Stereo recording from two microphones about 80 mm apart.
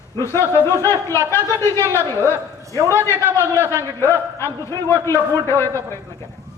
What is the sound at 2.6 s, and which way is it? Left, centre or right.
Speech, right.